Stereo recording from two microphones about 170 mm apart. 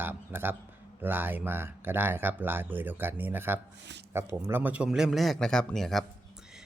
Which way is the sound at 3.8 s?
90° right.